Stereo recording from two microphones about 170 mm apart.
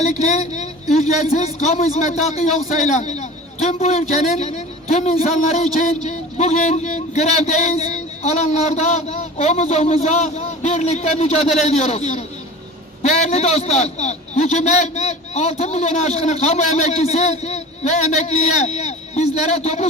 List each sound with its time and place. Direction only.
0.2 s a man's voice: 45° left (ahead or behind)